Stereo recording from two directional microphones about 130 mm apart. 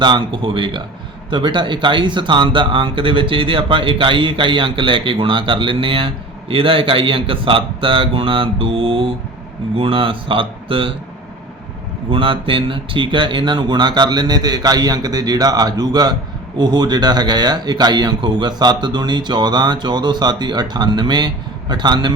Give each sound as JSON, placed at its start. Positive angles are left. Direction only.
{"t": 0.0, "sound": "speech", "side_deg": -35}
{"t": 12.1, "sound": "speech", "side_deg": -40}